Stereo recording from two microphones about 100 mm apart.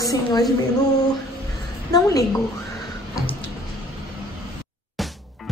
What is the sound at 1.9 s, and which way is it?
Speech, 35° left (ahead or behind).